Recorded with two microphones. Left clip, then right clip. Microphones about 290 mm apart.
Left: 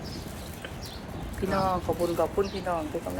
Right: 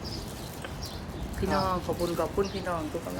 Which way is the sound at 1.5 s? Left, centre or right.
Centre.